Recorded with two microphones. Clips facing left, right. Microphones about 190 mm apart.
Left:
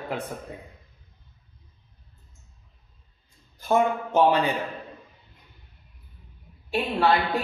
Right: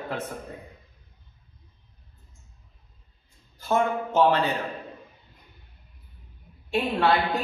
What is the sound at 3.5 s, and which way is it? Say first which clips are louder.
Speech: left 2 dB; 15° left (ahead or behind).